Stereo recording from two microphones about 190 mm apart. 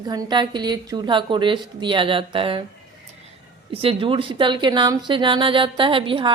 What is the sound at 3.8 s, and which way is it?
A woman's voice, 25° right (ahead or behind).